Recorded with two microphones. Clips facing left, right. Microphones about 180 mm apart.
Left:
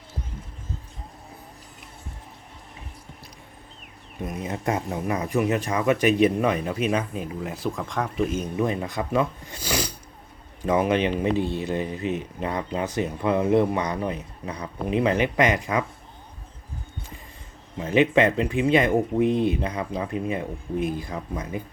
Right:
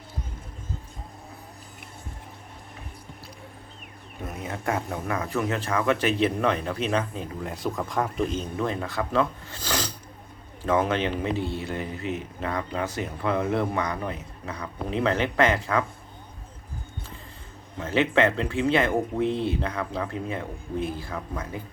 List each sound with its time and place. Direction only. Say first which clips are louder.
4.2 s speech: left 4 dB; 20° left (ahead or behind)
17.7 s speech: left 3 dB; 15° left (ahead or behind)